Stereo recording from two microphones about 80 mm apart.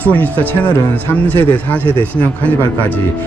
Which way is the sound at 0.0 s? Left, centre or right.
Centre.